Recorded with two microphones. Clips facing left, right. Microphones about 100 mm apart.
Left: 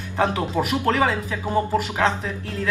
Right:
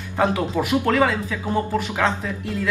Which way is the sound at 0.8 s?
20° left (ahead or behind).